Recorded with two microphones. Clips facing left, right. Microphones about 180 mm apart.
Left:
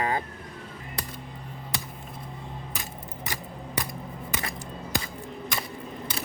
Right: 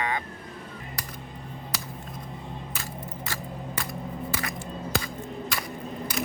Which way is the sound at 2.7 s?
15° left (ahead or behind).